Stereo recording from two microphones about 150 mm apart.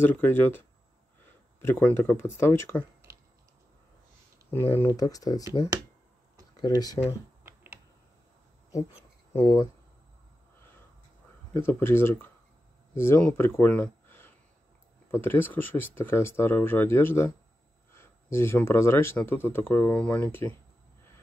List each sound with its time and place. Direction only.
0.0 s speech: 15° left (ahead or behind)
3.1 s a sound: 20° right (ahead or behind)
4.5 s speech: 15° left (ahead or behind)
6.6 s speech: 25° left (ahead or behind)
7.4 s computer keyboard: 15° right (ahead or behind)
9.4 s speech: 25° left (ahead or behind)
11.5 s speech: 15° left (ahead or behind)